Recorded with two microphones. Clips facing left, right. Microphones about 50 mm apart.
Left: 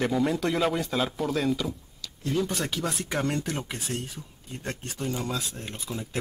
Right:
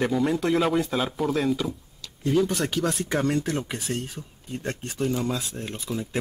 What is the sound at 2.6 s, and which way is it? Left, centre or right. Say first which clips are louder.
Speech: right 4 dB; right.